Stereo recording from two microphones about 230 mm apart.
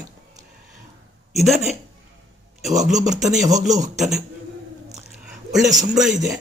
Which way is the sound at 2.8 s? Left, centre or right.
Centre.